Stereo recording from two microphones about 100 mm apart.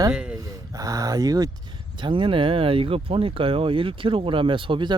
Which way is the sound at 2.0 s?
55° right (ahead or behind).